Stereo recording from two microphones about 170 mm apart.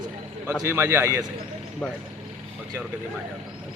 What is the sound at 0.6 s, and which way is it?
Speech, 15° right (ahead or behind).